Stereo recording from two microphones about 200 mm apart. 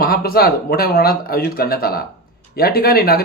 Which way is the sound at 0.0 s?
50° left (ahead or behind).